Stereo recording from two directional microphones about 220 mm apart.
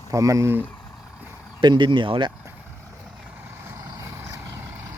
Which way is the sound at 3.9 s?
15° right (ahead or behind).